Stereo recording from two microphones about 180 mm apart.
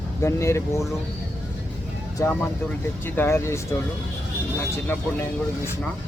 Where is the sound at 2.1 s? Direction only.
10° left (ahead or behind).